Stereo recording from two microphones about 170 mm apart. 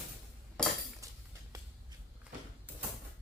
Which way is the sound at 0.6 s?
5° left (ahead or behind).